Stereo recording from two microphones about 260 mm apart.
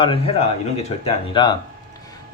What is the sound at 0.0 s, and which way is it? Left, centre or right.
Speech, left.